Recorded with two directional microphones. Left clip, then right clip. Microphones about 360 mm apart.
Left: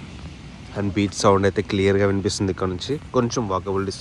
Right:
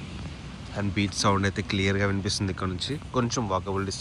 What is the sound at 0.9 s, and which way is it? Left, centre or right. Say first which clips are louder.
Speech: left 7 dB; centre.